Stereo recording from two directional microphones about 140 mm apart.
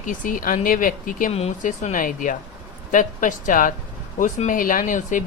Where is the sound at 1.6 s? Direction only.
65° left (ahead or behind).